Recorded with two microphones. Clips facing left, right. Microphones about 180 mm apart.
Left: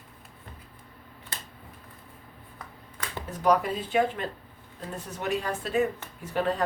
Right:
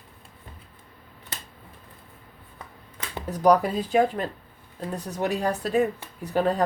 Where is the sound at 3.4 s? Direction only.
40° right (ahead or behind).